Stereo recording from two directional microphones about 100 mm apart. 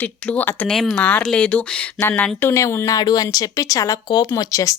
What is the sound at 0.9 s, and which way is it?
Speech, 20° left (ahead or behind).